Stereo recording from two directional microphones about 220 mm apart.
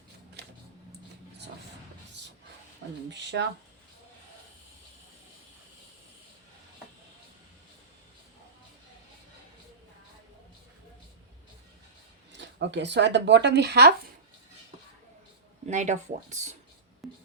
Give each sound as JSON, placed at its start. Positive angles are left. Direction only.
{"t": 3.1, "sound": "speech", "side_deg": -55}
{"t": 12.3, "sound": "speech", "side_deg": -50}
{"t": 15.6, "sound": "speech", "side_deg": -35}
{"t": 17.0, "sound": "music", "side_deg": 0}